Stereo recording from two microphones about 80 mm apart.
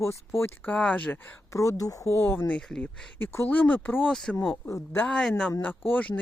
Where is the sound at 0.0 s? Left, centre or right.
Left.